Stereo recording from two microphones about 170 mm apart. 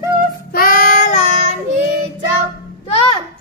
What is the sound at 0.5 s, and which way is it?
Child singing, 55° left (ahead or behind).